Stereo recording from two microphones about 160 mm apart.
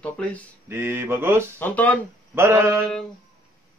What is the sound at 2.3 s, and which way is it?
Speech, 15° right (ahead or behind).